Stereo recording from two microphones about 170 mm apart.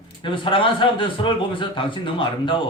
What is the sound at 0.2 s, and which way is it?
A man's voice, 30° left (ahead or behind).